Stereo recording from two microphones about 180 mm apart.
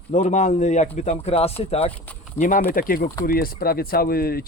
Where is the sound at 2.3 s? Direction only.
45° left (ahead or behind).